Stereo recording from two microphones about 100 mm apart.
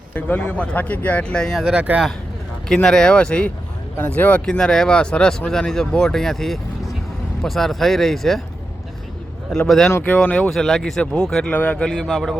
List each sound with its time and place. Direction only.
0.1 s speech: 20° left (ahead or behind)
1.5 s speech: 5° right (ahead or behind)
2.6 s speech: 5° left (ahead or behind)
9.5 s speech: 5° left (ahead or behind)
9.9 s speech: 15° left (ahead or behind)